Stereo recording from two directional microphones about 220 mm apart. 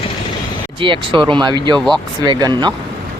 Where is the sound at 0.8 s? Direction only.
20° right (ahead or behind).